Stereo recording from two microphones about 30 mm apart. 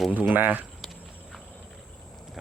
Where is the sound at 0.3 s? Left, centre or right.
Right.